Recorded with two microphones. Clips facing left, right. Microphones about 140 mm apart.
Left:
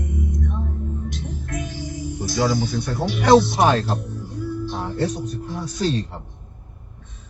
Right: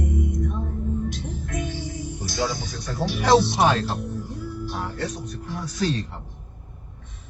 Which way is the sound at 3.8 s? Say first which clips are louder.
Left 2 dB; centre (ahead or behind).